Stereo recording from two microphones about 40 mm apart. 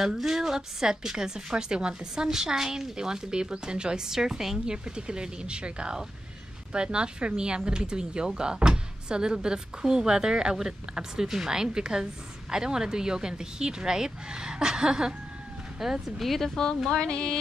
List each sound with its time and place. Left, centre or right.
0.0 s speech: centre
2.2 s speech: centre
4.8 s speech: right
16.2 s speech: centre
17.0 s music: left